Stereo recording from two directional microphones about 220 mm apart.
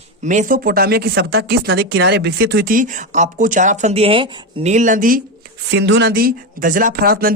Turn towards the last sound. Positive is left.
turn(degrees=-40)  # may be behind; listen again after turning